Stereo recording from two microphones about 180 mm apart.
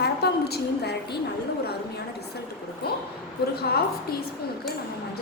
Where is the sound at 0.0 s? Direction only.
65° left (ahead or behind).